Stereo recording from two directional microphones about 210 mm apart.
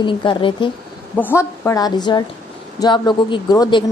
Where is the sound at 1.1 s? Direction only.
10° left (ahead or behind).